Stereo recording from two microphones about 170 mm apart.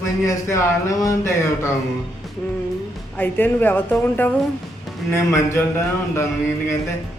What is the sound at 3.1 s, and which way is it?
Speech, 10° left (ahead or behind).